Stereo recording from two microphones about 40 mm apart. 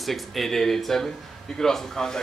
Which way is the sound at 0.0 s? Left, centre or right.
Centre.